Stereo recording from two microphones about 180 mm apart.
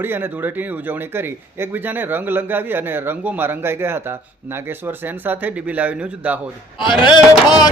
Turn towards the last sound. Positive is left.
turn(degrees=25)  # may be behind; listen again after turning